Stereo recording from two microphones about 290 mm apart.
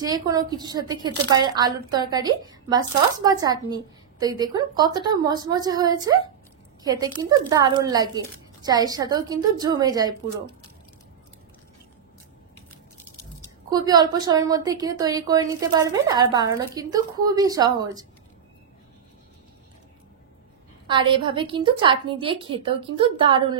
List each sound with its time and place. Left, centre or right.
0.0 s a woman's voice: centre
13.7 s a woman's voice: centre
20.8 s a woman's voice: centre